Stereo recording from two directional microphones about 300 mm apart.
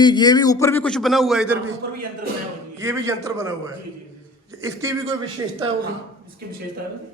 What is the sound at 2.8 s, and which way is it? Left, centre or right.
Speech, centre.